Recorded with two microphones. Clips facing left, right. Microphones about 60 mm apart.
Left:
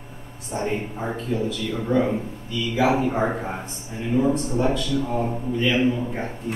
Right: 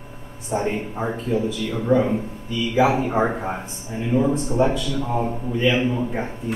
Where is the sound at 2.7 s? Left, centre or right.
Right.